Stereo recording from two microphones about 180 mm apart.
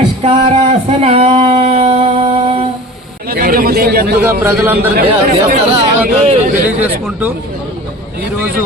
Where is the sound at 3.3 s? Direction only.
55° right (ahead or behind).